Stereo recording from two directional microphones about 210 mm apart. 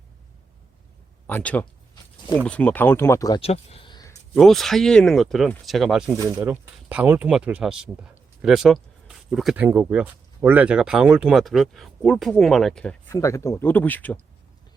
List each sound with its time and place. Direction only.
1.3 s speech: 5° left (ahead or behind)
3.4 s a sound: 30° left (ahead or behind)
4.4 s speech: centre (ahead or behind)